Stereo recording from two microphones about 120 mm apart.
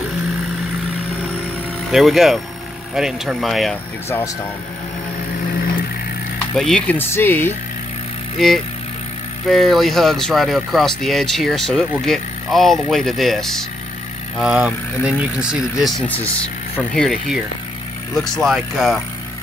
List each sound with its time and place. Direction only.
1.9 s speech: centre (ahead or behind)
6.5 s speech: 5° left (ahead or behind)
7.0 s speech: 20° left (ahead or behind)
8.4 s speech: centre (ahead or behind)
16.9 s speech: 5° left (ahead or behind)